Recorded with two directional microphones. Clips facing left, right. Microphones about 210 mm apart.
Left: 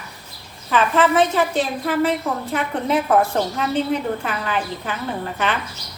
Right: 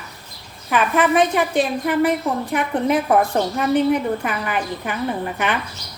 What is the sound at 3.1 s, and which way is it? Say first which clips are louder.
A woman's voice: right 1 dB; 15° right (ahead or behind).